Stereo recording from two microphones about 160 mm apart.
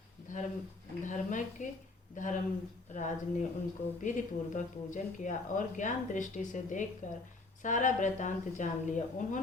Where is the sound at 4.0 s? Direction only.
50° left (ahead or behind).